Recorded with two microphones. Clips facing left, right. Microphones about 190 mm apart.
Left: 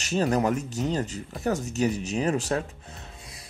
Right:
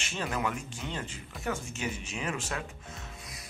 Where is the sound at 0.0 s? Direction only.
40° left (ahead or behind).